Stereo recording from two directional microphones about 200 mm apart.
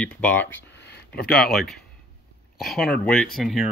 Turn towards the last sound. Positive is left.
turn(degrees=0)  # may be behind; listen again after turning